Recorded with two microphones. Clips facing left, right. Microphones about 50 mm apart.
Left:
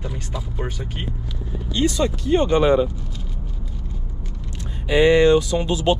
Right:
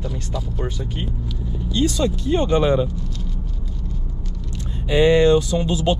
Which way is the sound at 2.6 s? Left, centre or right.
Left.